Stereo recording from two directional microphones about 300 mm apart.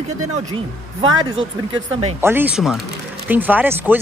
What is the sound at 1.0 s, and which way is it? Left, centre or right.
Speech, right.